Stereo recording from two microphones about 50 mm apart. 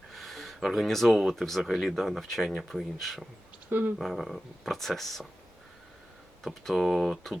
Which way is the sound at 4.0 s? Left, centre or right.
Centre.